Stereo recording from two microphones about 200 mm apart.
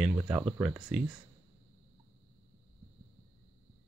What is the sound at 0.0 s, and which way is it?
Speech, 10° right (ahead or behind).